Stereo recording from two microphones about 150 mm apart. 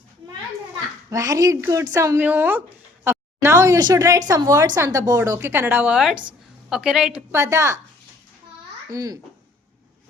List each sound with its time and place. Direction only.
1.1 s a woman's voice: 20° right (ahead or behind); by 7.3 s 5° right (ahead or behind)
7.3 s a woman's voice: 20° right (ahead or behind)
8.9 s a woman's voice: 25° right (ahead or behind)